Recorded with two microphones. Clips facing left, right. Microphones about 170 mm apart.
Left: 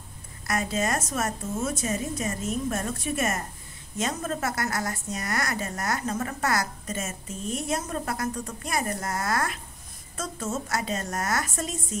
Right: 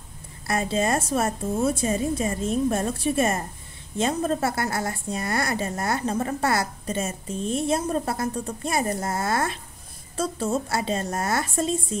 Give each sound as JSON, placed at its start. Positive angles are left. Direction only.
{"t": 0.5, "sound": "a woman's voice", "side_deg": -30}